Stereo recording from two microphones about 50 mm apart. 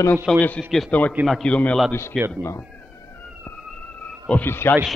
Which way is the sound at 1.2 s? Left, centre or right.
Right.